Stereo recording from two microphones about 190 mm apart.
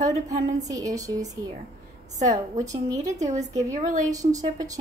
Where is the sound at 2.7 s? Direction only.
15° right (ahead or behind).